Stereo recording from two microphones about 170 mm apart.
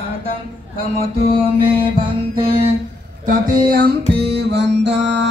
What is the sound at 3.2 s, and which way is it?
Music, 65° right (ahead or behind).